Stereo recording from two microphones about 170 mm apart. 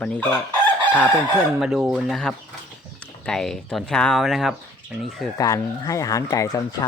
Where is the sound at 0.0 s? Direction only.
10° left (ahead or behind).